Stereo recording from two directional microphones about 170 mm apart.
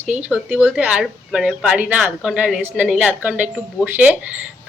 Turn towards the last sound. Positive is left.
turn(degrees=-10)  # may be behind; listen again after turning